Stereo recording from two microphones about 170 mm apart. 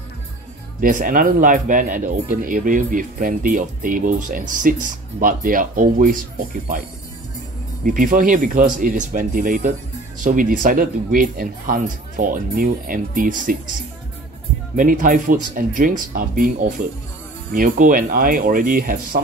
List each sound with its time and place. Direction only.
0.7 s speech: 50° right (ahead or behind)
7.8 s speech: 55° right (ahead or behind)
14.8 s speech: 50° right (ahead or behind)